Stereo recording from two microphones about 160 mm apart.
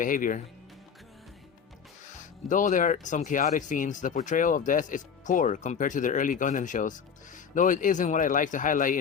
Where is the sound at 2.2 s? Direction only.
50° left (ahead or behind).